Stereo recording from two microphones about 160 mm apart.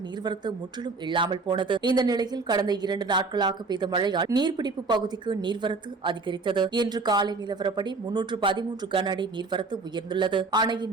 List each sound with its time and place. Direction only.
1.0 s speech: 30° right (ahead or behind)